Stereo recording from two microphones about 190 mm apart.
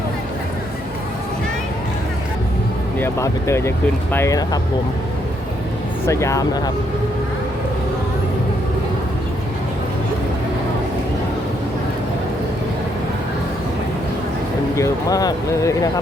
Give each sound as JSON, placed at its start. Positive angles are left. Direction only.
{"t": 3.0, "sound": "speech", "side_deg": 15}
{"t": 6.1, "sound": "speech", "side_deg": 15}
{"t": 14.8, "sound": "speech", "side_deg": 20}